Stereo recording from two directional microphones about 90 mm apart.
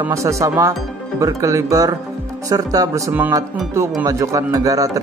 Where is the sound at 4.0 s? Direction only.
35° right (ahead or behind).